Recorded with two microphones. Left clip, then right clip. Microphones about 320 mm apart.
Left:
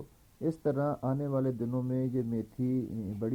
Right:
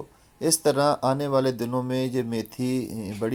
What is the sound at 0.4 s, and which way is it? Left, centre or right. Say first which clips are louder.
Speech: right 10 dB; centre.